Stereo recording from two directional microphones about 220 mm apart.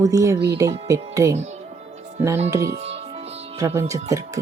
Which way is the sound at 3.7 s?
15° right (ahead or behind).